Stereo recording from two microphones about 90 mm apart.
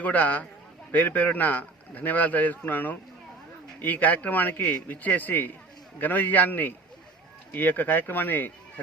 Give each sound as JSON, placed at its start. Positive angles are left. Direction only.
{"t": 0.0, "sound": "speech", "side_deg": 15}